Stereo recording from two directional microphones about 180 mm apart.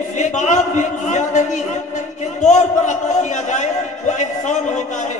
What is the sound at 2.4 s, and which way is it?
A man's voice, 40° left (ahead or behind).